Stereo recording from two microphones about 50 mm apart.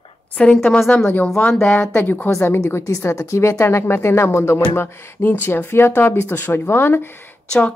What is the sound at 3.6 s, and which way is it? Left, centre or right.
Speech, left.